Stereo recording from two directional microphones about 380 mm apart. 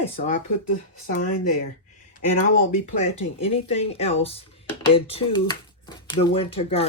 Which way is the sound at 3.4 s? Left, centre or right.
Centre.